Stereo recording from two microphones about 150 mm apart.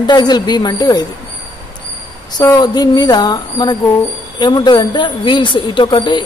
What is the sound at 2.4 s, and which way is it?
Speech, 25° left (ahead or behind).